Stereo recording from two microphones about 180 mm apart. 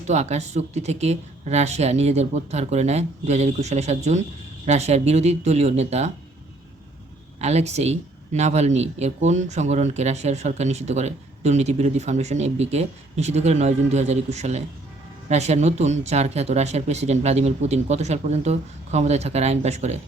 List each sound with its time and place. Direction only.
0.1 s speech: 40° right (ahead or behind)
7.3 s speech: 35° right (ahead or behind)